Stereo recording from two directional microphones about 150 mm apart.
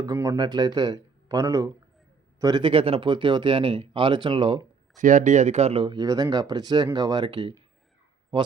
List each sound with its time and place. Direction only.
0.0 s speech: 20° right (ahead or behind)
4.9 s speech: 60° right (ahead or behind); by 8.5 s 35° right (ahead or behind)